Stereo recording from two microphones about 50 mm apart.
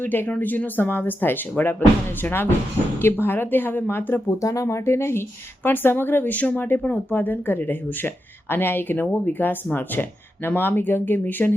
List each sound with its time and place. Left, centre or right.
0.0 s speech: left
4.3 s speech: left
5.6 s speech: left